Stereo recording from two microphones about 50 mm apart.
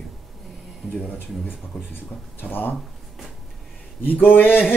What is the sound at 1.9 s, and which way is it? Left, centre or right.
Speech, left.